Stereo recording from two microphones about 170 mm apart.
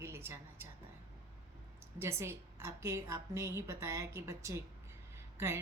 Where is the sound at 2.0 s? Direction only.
15° right (ahead or behind).